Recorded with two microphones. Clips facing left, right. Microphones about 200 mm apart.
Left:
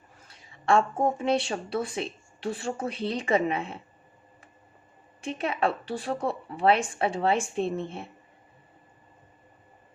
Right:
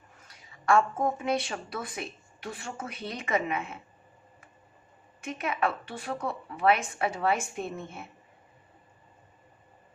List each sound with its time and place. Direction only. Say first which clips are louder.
0.3 s speech: left 1 dB; 30° left (ahead or behind)
5.2 s speech: left 3 dB; 30° left (ahead or behind)